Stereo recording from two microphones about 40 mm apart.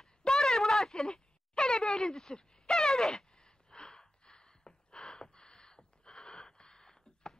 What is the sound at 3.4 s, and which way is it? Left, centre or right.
Gasp, left.